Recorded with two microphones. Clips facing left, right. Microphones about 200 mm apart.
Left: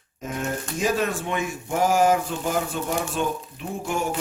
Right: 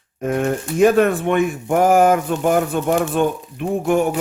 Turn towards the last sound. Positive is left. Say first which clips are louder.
# right 10 dB
turn(degrees=-60)  # may be behind; listen again after turning